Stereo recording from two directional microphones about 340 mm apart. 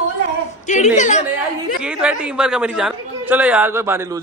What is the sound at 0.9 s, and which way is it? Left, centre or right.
Speech, left.